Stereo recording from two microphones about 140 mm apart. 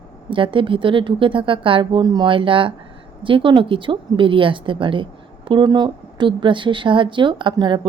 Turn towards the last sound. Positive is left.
turn(degrees=-35)  # may be behind; listen again after turning